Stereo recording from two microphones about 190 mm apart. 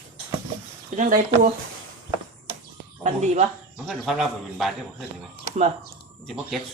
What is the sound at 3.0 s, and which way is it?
Speech, 35° right (ahead or behind).